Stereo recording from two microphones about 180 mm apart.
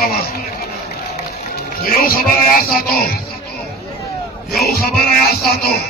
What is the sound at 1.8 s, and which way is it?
Speech, 55° left (ahead or behind).